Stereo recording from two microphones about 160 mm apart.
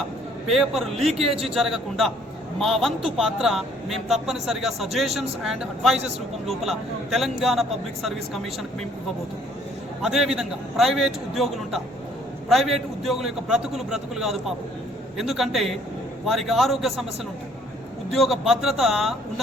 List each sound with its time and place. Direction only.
0.4 s a man's voice: centre (ahead or behind)
1.2 s a man's voice: 40° right (ahead or behind)
1.5 s a man's voice: centre (ahead or behind)
10.0 s a man's voice: 5° right (ahead or behind)
18.1 s a man's voice: centre (ahead or behind)